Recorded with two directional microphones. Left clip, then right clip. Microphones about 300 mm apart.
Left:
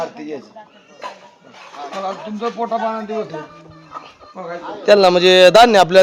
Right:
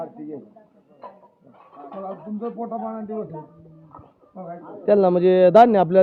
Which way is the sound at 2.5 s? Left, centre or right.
Centre.